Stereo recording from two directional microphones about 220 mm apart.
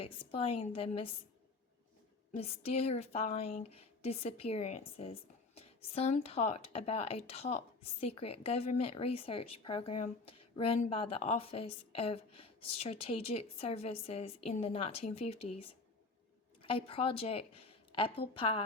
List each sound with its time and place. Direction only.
0.0 s speech: 25° left (ahead or behind)
2.3 s speech: 30° left (ahead or behind)